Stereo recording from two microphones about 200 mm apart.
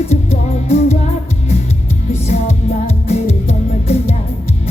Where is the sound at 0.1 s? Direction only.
30° left (ahead or behind).